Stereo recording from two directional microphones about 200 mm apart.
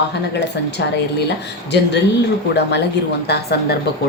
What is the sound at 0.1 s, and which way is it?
Speech, 60° left (ahead or behind).